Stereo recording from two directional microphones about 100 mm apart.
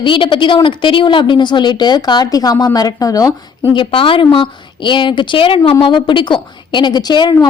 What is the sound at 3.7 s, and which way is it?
A woman's voice, 60° left (ahead or behind).